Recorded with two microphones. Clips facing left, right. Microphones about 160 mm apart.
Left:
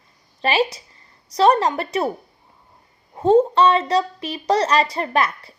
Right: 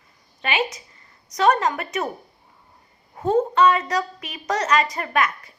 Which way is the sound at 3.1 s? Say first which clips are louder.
Left 5 dB; 30° left (ahead or behind).